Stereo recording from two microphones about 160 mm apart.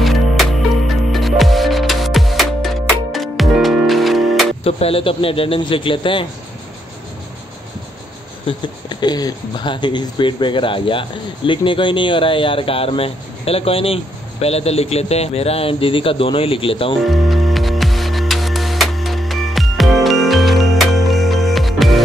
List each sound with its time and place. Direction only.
0.0 s music: centre (ahead or behind)
4.6 s speech: 40° left (ahead or behind)
8.5 s speech: 25° left (ahead or behind)
17.0 s music: centre (ahead or behind)